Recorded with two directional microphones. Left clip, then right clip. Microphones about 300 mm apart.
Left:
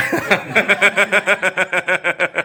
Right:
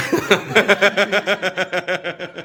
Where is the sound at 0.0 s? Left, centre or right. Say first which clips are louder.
Left 1 dB; centre.